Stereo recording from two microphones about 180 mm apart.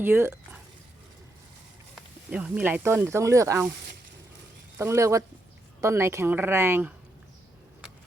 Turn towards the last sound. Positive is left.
turn(degrees=-10)  # may be behind; listen again after turning